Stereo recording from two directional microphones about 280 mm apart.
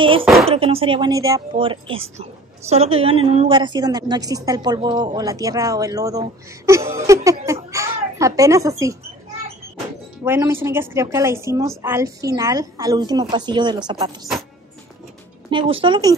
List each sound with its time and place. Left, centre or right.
0.2 s speech: centre
0.5 s a woman's voice: centre
10.2 s a woman's voice: centre
15.5 s a woman's voice: centre